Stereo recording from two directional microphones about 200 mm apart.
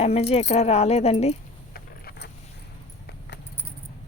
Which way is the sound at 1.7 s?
50° left (ahead or behind).